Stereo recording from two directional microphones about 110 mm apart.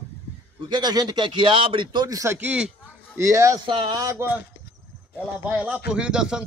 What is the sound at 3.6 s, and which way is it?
Speech, 50° right (ahead or behind).